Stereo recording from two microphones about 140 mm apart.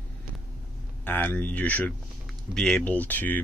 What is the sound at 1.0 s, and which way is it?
Speech, 15° left (ahead or behind).